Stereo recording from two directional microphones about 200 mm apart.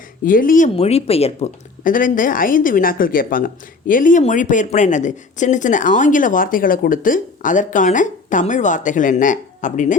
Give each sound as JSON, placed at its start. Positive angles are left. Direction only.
{"t": 0.3, "sound": "speech", "side_deg": 45}